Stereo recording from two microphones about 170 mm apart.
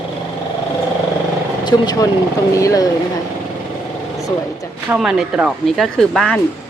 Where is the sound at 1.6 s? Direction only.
25° left (ahead or behind).